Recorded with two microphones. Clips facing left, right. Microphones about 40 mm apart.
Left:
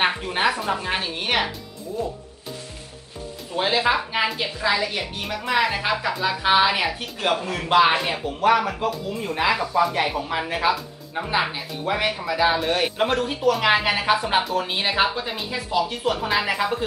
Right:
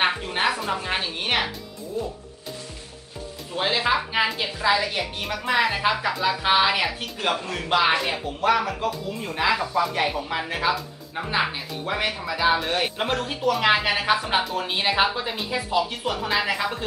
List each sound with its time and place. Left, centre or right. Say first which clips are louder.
0.0 s speech: left 1 dB; centre
3.5 s speech: left 2 dB; centre